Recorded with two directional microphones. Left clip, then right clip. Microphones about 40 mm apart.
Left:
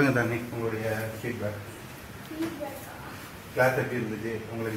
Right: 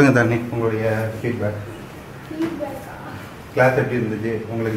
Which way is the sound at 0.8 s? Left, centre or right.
Centre.